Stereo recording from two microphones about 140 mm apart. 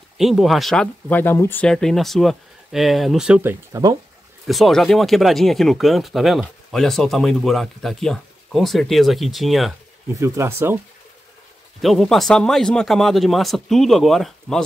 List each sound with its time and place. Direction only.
0.2 s speech: centre (ahead or behind); by 1.7 s 15° left (ahead or behind)
1.7 s speech: 5° left (ahead or behind)
10.1 s speech: 20° right (ahead or behind)
11.8 s speech: centre (ahead or behind)